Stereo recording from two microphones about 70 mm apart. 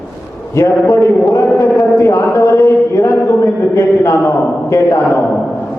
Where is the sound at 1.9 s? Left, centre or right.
Left.